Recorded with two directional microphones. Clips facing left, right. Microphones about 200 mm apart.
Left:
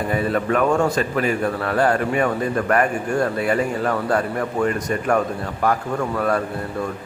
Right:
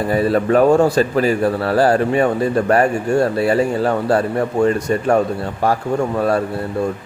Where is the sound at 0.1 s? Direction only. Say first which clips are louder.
Right 6 dB; 35° right (ahead or behind).